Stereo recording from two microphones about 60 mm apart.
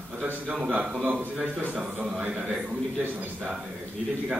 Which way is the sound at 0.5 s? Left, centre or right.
Right.